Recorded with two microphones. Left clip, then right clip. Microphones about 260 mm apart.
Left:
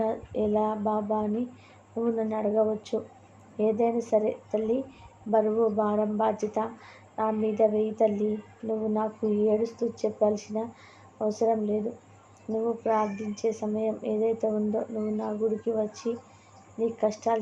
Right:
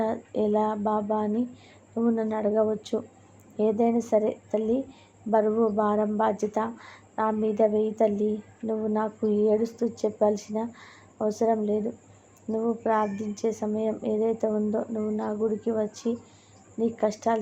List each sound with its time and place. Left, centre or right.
0.0 s speech: centre